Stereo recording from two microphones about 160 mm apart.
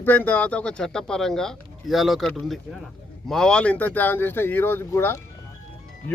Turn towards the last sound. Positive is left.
turn(degrees=15)  # may be behind; listen again after turning